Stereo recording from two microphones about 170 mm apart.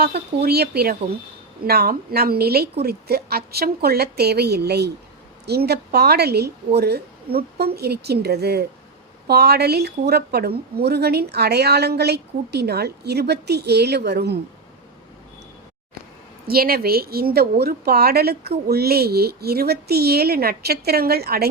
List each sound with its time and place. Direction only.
0.0 s speech: 70° right (ahead or behind)
16.5 s speech: 65° right (ahead or behind)